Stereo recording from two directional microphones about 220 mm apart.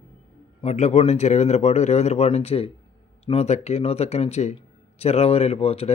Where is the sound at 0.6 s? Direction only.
30° left (ahead or behind).